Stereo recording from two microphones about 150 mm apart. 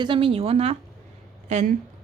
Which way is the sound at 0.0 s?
35° right (ahead or behind).